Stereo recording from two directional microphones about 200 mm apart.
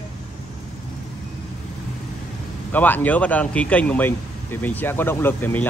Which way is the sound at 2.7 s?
10° left (ahead or behind).